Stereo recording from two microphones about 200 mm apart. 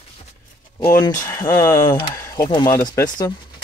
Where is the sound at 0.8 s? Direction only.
15° left (ahead or behind).